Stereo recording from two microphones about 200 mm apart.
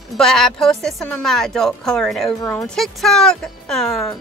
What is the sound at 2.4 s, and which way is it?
Speech, 15° left (ahead or behind).